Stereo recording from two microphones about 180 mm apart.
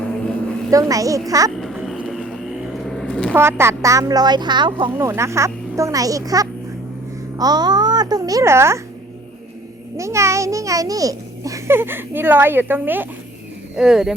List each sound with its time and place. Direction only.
0.7 s speech: 20° right (ahead or behind)
1.5 s vehicle: centre (ahead or behind)
3.3 s a child's voice: 15° right (ahead or behind)
10.0 s a child's voice: 15° right (ahead or behind)